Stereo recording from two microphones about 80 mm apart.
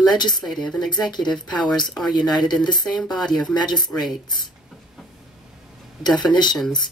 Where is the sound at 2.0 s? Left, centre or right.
Left.